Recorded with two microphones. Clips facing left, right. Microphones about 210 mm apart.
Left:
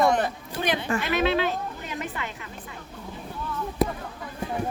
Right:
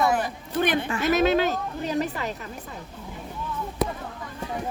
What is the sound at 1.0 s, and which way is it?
Speech, 40° right (ahead or behind).